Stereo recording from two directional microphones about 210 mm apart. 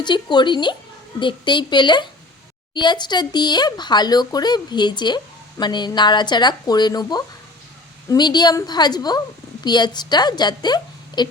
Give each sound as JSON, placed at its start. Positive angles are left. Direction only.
{"t": 0.0, "sound": "speech", "side_deg": 20}